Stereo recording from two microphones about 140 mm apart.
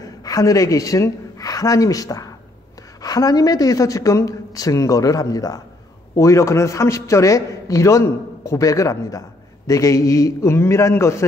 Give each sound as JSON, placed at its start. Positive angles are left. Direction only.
{"t": 0.0, "sound": "a man's voice", "side_deg": 25}